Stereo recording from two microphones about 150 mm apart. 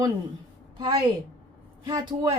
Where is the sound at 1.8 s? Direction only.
25° right (ahead or behind).